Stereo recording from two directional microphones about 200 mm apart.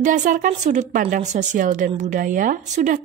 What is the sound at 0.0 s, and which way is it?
A woman's voice, 40° right (ahead or behind).